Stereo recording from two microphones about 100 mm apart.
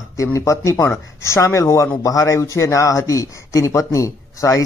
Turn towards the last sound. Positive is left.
turn(degrees=30)  # may be behind; listen again after turning